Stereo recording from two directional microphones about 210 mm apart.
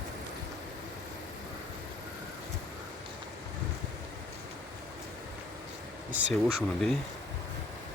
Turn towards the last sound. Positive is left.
turn(degrees=0)  # may be behind; listen again after turning